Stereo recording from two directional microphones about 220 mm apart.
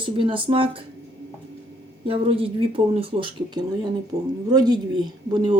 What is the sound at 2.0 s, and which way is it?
A woman's voice, 25° right (ahead or behind).